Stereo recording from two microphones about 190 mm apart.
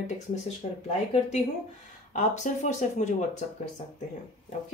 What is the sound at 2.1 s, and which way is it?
Speech, 40° left (ahead or behind).